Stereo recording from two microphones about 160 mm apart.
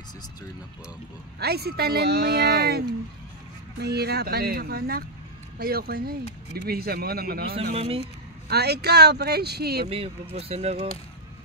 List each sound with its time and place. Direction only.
1.4 s speech: 80° right
3.8 s speech: 90° right; by 7.5 s 75° right (ahead or behind)
7.7 s speech: 35° right (ahead or behind)
8.5 s speech: 90° right
10.3 s speech: 40° right (ahead or behind)